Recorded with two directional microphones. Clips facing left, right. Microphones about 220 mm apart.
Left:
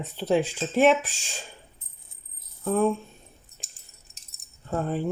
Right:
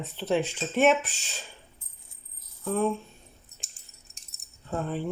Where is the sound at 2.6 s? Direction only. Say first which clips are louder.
Left 3 dB; 45° left (ahead or behind).